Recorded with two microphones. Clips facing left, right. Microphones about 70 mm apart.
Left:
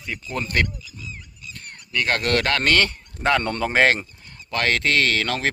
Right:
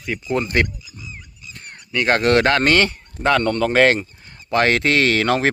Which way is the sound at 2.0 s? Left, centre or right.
Right.